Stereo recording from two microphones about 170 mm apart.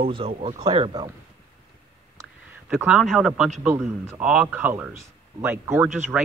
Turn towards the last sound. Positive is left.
turn(degrees=-5)  # may be behind; listen again after turning